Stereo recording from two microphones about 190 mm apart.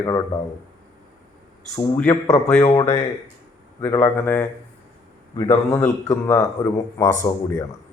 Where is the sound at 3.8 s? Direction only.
15° left (ahead or behind).